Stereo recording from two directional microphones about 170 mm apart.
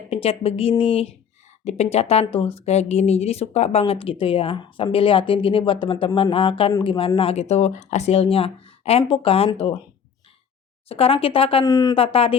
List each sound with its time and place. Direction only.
0.1 s speech: 35° left (ahead or behind)
10.8 s speech: 35° left (ahead or behind)
11.6 s speech: 20° left (ahead or behind)
11.9 s speech: 35° left (ahead or behind)